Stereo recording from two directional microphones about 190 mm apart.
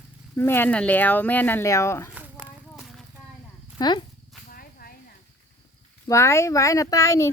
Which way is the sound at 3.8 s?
25° left (ahead or behind).